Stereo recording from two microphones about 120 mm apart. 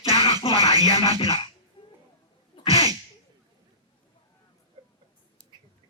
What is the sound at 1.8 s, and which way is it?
Finger snapping, 50° left (ahead or behind).